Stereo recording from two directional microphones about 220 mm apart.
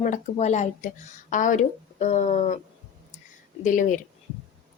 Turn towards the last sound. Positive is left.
turn(degrees=35)  # may be behind; listen again after turning